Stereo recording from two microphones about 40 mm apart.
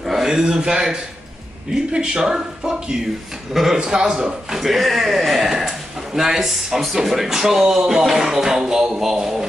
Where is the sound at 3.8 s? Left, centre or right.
Centre.